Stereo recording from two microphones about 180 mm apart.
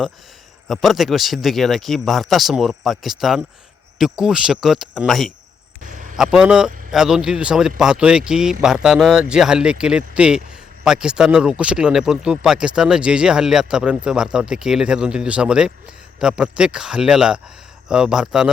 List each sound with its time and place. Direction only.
0.7 s speech: centre (ahead or behind)
5.8 s a sound: 45° right (ahead or behind)
6.1 s speech: 5° right (ahead or behind)